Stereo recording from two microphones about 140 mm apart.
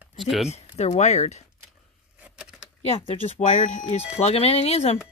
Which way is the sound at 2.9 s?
45° left (ahead or behind).